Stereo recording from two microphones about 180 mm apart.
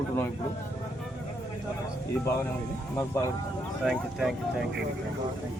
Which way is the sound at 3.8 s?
Centre (ahead or behind).